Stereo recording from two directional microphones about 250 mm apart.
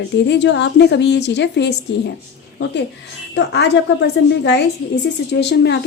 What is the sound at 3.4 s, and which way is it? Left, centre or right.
A woman's voice, left.